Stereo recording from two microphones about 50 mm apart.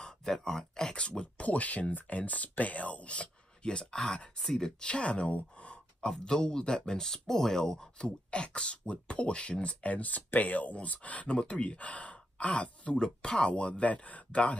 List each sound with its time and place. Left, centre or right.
0.0 s speech: centre